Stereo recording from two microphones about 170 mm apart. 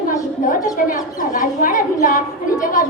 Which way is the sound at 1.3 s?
50° left (ahead or behind).